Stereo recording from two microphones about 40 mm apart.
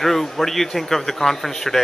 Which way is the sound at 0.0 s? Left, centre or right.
Centre.